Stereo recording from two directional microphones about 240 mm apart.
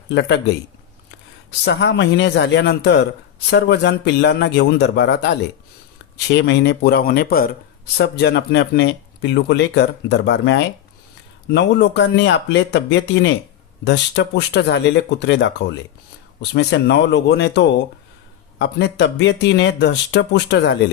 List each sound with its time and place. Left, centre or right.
0.1 s speech: left
1.6 s speech: left